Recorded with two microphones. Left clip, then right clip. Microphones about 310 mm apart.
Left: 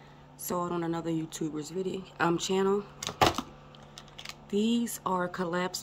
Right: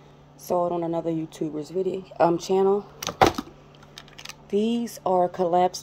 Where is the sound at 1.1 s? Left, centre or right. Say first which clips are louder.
Right 5 dB; centre.